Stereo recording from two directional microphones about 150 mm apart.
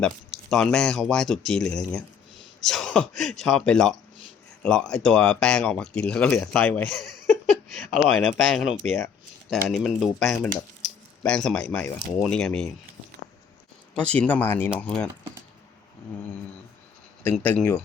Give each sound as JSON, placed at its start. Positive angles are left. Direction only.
{"t": 0.0, "sound": "speech", "side_deg": 5}
{"t": 14.0, "sound": "speech", "side_deg": 10}
{"t": 17.2, "sound": "speech", "side_deg": 10}